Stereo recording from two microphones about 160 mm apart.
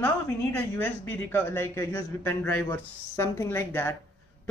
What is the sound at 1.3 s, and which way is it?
Speech, 15° left (ahead or behind).